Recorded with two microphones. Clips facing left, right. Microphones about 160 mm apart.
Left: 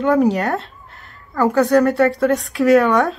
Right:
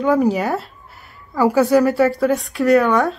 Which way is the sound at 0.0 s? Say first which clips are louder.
Left 1 dB; centre (ahead or behind).